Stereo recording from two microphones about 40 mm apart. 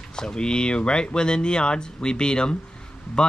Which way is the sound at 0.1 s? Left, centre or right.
Centre.